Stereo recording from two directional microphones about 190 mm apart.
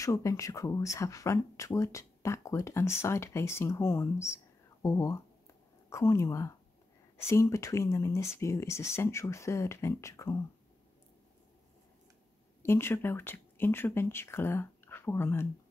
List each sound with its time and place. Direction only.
0.0 s speech: 15° left (ahead or behind)
12.6 s speech: 10° left (ahead or behind)